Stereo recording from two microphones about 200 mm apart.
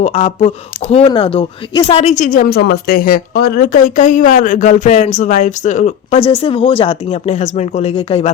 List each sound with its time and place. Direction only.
0.0 s speech: 30° left (ahead or behind)